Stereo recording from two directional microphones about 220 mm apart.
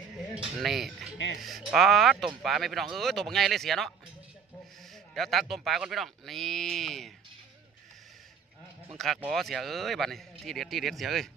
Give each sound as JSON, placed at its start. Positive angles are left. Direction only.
{"t": 0.3, "sound": "speech", "side_deg": 0}
{"t": 1.1, "sound": "speech", "side_deg": 55}
{"t": 1.4, "sound": "speech", "side_deg": 0}
{"t": 5.1, "sound": "speech", "side_deg": 0}
{"t": 8.9, "sound": "speech", "side_deg": 0}